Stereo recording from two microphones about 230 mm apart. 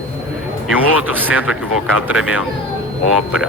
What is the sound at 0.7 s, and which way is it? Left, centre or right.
Speech, centre.